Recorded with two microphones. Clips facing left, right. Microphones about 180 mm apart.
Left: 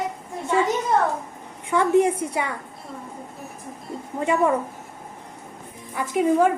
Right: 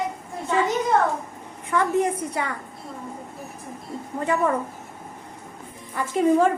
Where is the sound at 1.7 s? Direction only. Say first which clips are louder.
Left 4 dB; 15° left (ahead or behind).